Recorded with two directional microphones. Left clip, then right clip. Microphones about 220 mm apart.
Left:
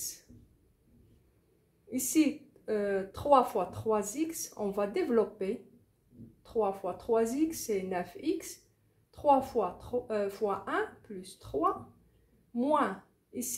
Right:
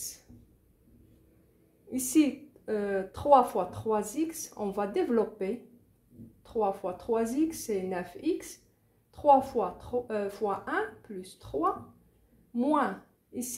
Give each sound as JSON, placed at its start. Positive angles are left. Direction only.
{"t": 1.9, "sound": "a woman's voice", "side_deg": -25}